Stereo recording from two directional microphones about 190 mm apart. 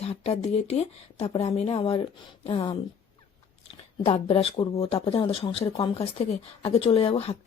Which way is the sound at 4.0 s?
30° left (ahead or behind).